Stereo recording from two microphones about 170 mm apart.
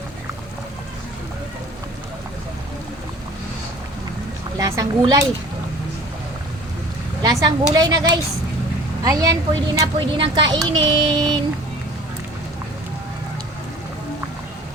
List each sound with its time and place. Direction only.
4.5 s a woman's voice: 20° right (ahead or behind)
7.2 s a woman's voice: 25° right (ahead or behind)